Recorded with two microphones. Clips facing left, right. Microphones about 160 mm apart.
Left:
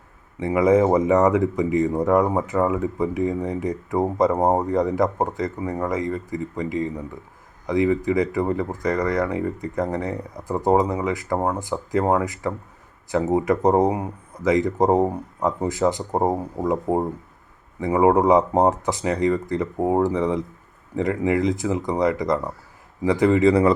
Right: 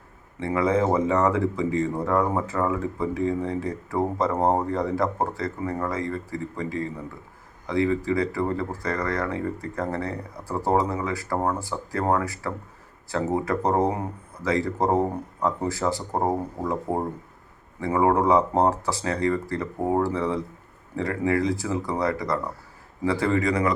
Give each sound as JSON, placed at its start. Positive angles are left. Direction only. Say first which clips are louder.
{"t": 0.3, "sound": "speech", "louder": "left 5 dB", "side_deg": 15}